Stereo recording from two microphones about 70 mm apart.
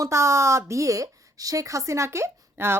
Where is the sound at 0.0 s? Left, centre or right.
Right.